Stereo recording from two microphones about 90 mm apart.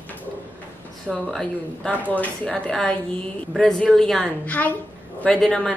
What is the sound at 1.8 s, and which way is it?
Speech, 20° left (ahead or behind).